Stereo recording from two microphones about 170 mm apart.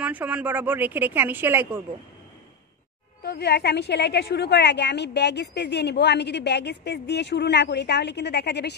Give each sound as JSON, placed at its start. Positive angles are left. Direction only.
{"t": 0.0, "sound": "a woman's voice", "side_deg": -10}
{"t": 3.3, "sound": "a woman's voice", "side_deg": 75}